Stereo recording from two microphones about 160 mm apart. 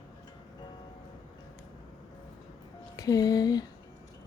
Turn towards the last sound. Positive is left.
turn(degrees=25)  # may be behind; listen again after turning